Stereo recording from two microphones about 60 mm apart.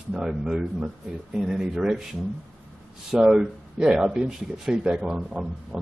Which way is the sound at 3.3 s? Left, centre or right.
Centre.